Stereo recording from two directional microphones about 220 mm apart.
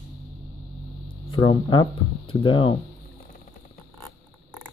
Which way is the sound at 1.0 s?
25° left (ahead or behind).